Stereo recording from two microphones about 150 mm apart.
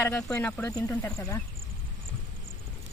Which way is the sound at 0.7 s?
25° left (ahead or behind).